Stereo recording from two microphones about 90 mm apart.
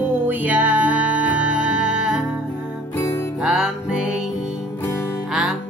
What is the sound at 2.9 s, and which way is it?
Music, 30° left (ahead or behind).